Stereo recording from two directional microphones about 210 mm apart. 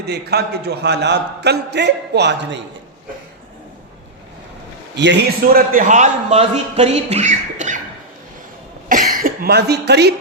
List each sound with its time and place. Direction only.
0.0 s a man's voice: 50° right (ahead or behind)
4.9 s a man's voice: 55° right (ahead or behind); by 7.8 s 35° right (ahead or behind)
8.9 s cough: 40° right (ahead or behind)